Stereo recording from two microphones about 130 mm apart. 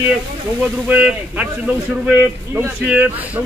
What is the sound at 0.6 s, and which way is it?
Speech, 10° right (ahead or behind).